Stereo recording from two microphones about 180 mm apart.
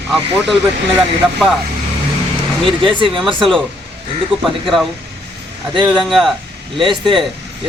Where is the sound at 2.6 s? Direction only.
30° right (ahead or behind).